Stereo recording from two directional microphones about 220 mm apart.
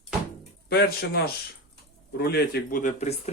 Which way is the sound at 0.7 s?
45° left (ahead or behind).